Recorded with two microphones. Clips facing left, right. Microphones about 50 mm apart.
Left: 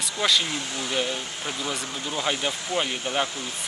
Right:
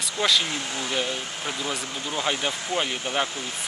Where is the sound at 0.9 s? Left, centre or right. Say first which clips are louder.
Left 2 dB; centre.